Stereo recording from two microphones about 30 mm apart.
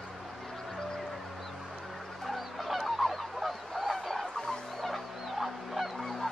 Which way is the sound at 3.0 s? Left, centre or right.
Centre.